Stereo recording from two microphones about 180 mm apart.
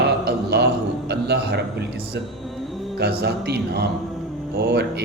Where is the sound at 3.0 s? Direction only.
65° right (ahead or behind).